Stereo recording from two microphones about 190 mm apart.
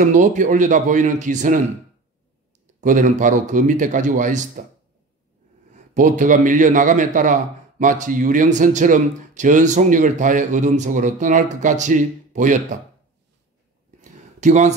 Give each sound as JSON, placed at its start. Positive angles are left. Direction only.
{"t": 0.0, "sound": "a man's voice", "side_deg": -40}
{"t": 2.8, "sound": "a man's voice", "side_deg": -45}
{"t": 5.7, "sound": "a man's voice", "side_deg": -40}
{"t": 14.4, "sound": "speech", "side_deg": -40}